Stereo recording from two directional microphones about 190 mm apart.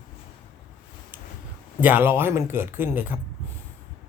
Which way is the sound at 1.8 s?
10° right (ahead or behind).